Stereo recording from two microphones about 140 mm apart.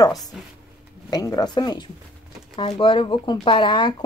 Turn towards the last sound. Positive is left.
turn(degrees=35)  # may be behind; listen again after turning